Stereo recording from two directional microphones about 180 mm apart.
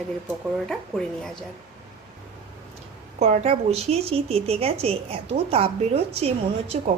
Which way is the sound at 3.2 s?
35° right (ahead or behind).